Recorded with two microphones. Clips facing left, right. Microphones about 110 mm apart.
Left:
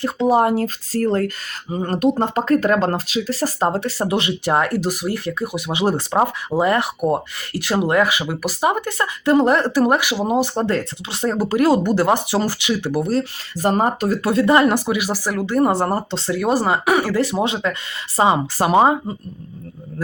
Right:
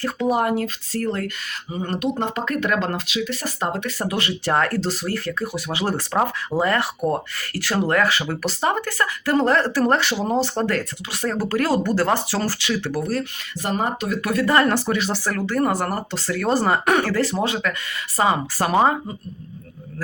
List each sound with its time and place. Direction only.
0.0 s speech: 25° left (ahead or behind)
13.6 s speech: 40° left (ahead or behind); by 16.4 s 25° left (ahead or behind)
16.4 s speech: 10° left (ahead or behind)